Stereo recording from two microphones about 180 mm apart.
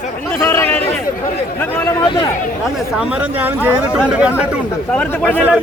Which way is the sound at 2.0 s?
25° left (ahead or behind).